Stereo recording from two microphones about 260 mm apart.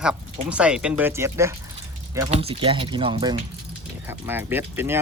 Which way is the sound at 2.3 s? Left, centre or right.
Right.